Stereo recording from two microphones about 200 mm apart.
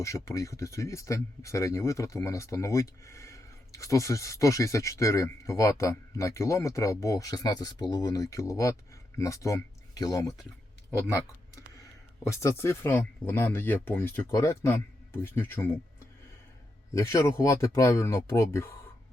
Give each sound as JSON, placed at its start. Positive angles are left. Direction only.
{"t": 0.0, "sound": "speech", "side_deg": 15}
{"t": 12.2, "sound": "speech", "side_deg": 15}
{"t": 17.0, "sound": "speech", "side_deg": 15}